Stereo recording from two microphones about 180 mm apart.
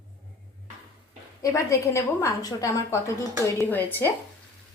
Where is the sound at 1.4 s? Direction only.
20° left (ahead or behind).